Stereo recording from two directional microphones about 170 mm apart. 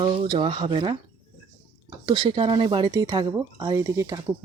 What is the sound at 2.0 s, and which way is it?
Speech, 25° right (ahead or behind).